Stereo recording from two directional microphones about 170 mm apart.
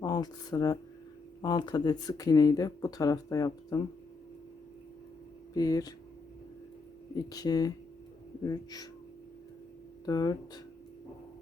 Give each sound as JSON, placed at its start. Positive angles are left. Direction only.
{"t": 0.0, "sound": "speech", "side_deg": 25}
{"t": 5.5, "sound": "speech", "side_deg": 20}
{"t": 7.2, "sound": "speech", "side_deg": 20}
{"t": 10.1, "sound": "speech", "side_deg": 25}